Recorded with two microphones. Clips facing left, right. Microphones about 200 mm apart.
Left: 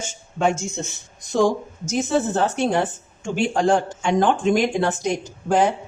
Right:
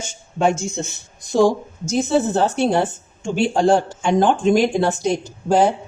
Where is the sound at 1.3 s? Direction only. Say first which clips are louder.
Right 3 dB; 35° right (ahead or behind).